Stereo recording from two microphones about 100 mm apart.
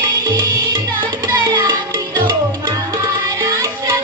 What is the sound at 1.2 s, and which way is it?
Music, 45° right (ahead or behind).